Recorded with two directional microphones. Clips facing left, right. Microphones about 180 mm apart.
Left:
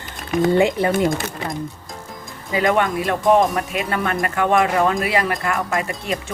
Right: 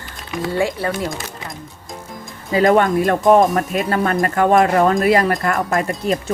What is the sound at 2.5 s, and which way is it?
Speech, 40° right (ahead or behind).